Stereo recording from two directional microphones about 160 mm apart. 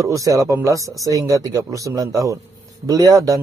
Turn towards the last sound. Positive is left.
turn(degrees=-20)  # may be behind; listen again after turning